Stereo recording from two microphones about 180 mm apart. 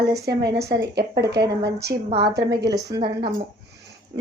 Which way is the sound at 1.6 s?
65° right (ahead or behind).